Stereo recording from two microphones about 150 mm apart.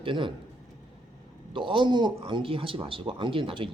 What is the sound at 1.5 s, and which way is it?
Speech, 35° right (ahead or behind).